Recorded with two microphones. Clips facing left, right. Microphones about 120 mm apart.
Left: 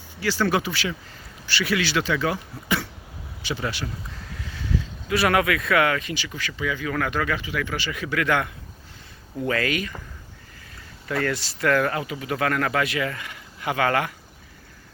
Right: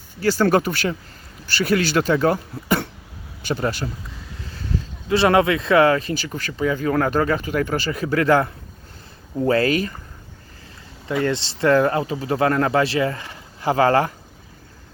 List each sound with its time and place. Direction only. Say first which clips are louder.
0.2 s speech: right 6 dB; 45° right (ahead or behind)
5.0 s speech: right 5 dB; 30° right (ahead or behind)
11.2 s speech: right 5 dB; 25° right (ahead or behind)